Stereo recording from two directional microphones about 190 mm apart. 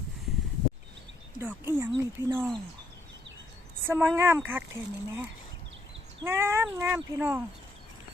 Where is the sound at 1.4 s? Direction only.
10° right (ahead or behind).